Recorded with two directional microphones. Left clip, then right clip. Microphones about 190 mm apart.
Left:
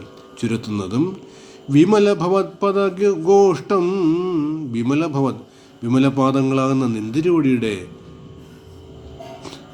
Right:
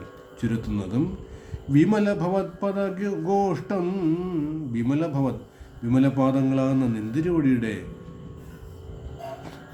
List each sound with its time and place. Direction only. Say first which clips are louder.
0.3 s a man's voice: left 6 dB; 10° left (ahead or behind)